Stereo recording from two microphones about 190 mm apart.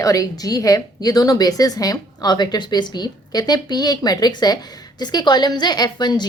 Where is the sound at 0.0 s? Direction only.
20° left (ahead or behind).